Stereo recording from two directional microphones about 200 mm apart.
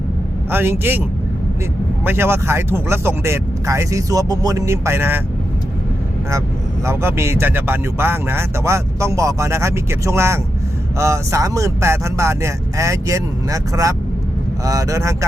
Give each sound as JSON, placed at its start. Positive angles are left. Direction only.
{"t": 0.5, "sound": "speech", "side_deg": -10}
{"t": 2.0, "sound": "speech", "side_deg": -10}
{"t": 6.8, "sound": "speech", "side_deg": -10}